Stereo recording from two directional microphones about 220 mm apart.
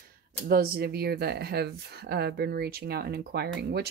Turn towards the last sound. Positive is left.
turn(degrees=-50)  # may be behind; listen again after turning